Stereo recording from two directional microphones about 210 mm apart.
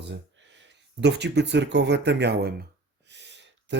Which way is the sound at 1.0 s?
55° right (ahead or behind).